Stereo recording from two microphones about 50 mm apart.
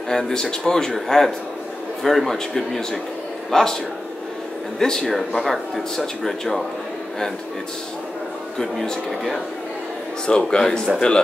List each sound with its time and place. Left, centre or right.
0.1 s a man's voice: centre
4.7 s speech: centre
8.5 s speech: centre
10.2 s a man's voice: centre